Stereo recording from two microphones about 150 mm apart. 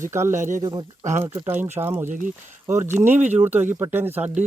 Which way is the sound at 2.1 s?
60° right (ahead or behind).